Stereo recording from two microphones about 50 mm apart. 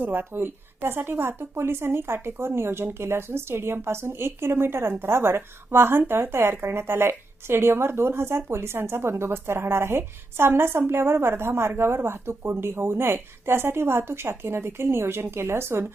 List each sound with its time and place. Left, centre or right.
0.0 s a woman's voice: right